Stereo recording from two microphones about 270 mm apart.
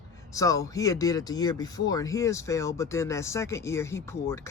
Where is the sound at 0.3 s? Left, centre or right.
Centre.